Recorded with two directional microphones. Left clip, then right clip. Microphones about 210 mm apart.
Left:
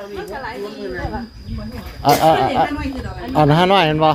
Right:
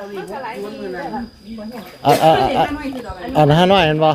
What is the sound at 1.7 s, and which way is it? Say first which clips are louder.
Speech: right 1 dB; 10° right (ahead or behind).